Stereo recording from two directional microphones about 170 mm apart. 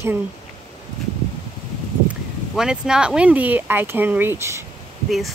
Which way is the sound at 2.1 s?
5° right (ahead or behind).